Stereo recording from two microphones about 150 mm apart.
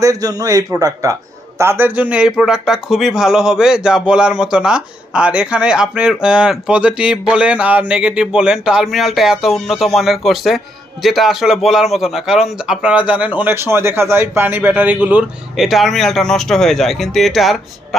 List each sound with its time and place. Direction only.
0.0 s a man's voice: 25° right (ahead or behind); by 17.6 s centre (ahead or behind)